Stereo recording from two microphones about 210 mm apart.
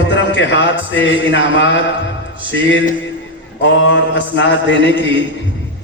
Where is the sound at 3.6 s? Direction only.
60° left (ahead or behind).